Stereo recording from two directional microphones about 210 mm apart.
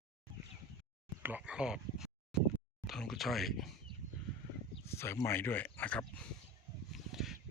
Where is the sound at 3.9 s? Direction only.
20° right (ahead or behind).